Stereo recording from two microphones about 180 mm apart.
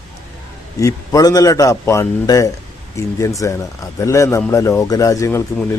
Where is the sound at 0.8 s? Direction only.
20° left (ahead or behind).